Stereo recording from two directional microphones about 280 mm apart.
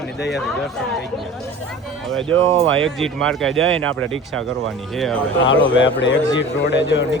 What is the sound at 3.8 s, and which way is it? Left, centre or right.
Speech, right.